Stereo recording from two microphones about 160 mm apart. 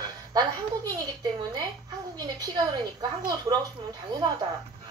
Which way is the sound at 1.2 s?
25° right (ahead or behind).